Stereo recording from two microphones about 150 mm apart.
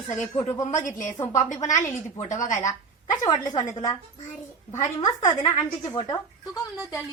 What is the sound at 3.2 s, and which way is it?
Speech, 25° left (ahead or behind).